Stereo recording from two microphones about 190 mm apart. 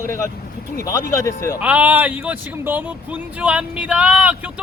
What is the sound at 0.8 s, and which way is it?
Speech, 15° left (ahead or behind).